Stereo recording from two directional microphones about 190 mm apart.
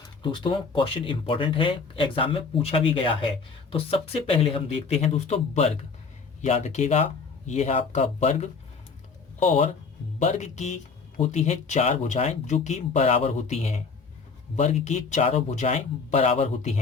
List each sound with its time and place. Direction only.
0.0 s speech: 25° left (ahead or behind)